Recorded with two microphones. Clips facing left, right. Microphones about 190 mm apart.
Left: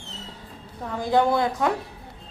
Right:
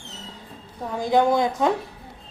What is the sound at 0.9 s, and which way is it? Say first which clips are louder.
Speech: right 2 dB; 15° right (ahead or behind).